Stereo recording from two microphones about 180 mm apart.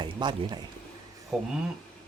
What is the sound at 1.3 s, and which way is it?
Speech, centre (ahead or behind).